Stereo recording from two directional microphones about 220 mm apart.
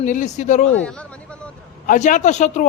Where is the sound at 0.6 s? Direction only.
5° left (ahead or behind).